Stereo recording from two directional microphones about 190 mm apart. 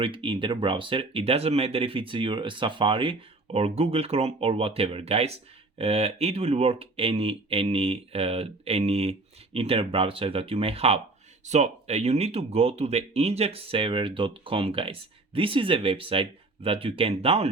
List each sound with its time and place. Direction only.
0.0 s speech: 25° right (ahead or behind)